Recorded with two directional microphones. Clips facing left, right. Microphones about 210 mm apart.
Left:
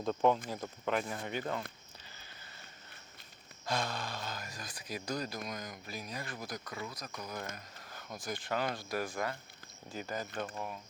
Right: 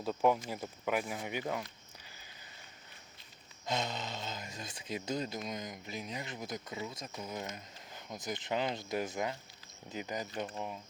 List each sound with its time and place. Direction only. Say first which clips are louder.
0.0 s speech: left 1 dB; 10° right (ahead or behind)
2.0 s a sound: left 2 dB; 15° right (ahead or behind)
3.7 s speech: even; 20° right (ahead or behind)